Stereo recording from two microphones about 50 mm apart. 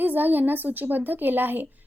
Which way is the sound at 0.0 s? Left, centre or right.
Right.